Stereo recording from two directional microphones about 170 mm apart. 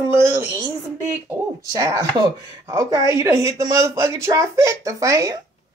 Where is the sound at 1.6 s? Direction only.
20° right (ahead or behind).